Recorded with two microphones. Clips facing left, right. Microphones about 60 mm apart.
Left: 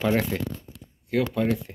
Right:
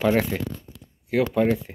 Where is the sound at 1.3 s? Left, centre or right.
Right.